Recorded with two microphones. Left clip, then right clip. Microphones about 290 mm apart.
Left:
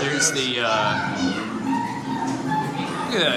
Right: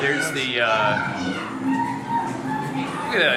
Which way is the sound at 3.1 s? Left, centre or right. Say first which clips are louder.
Right 3 dB; centre.